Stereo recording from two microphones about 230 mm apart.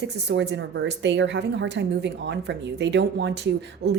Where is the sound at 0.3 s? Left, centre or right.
Right.